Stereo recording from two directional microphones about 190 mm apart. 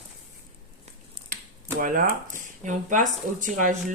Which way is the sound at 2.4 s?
40° right (ahead or behind).